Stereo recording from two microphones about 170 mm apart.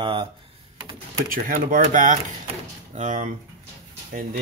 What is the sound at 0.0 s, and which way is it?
Computer keyboard, 30° right (ahead or behind).